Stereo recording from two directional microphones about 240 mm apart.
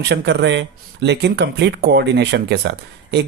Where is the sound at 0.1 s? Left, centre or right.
Right.